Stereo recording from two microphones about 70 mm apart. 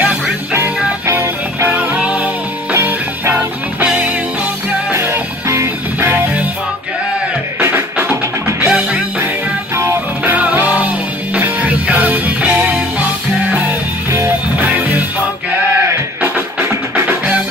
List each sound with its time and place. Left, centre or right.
1.1 s music: right
1.8 s music: centre
2.7 s music: right
3.3 s music: right
4.9 s music: right
7.6 s music: right
8.5 s music: centre
10.2 s music: right
16.6 s music: right